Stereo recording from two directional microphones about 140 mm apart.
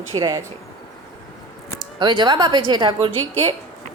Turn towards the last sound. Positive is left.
turn(degrees=15)  # may be behind; listen again after turning